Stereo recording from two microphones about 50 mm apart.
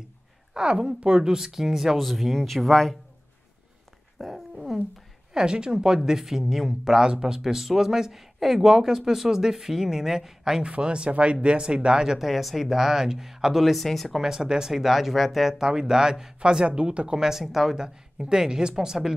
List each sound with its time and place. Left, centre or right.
0.6 s speech: centre
4.2 s dog: centre
5.3 s speech: centre
10.6 s speech: right
12.3 s speech: centre
13.7 s speech: centre
14.2 s speech: centre